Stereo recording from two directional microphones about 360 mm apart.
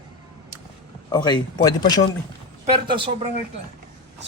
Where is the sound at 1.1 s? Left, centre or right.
Centre.